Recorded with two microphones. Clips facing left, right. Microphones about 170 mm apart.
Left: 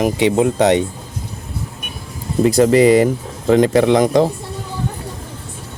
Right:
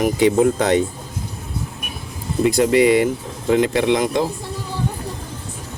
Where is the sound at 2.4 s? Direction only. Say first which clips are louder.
Left 3 dB; 35° left (ahead or behind).